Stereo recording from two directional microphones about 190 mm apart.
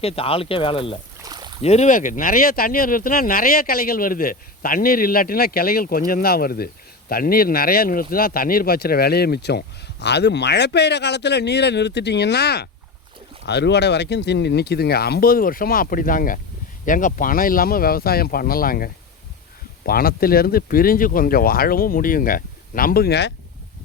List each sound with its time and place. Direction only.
0.0 s speech: 30° left (ahead or behind)
1.2 s rowboat: 20° right (ahead or behind)
1.6 s speech: 35° left (ahead or behind); by 23.3 s 60° left (ahead or behind)